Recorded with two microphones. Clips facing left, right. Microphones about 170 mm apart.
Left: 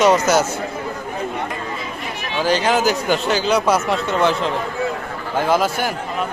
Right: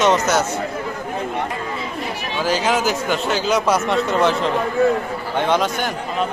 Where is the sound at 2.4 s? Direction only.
Centre (ahead or behind).